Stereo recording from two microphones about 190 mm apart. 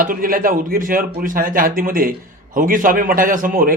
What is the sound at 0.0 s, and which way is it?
A man's voice, 45° right (ahead or behind).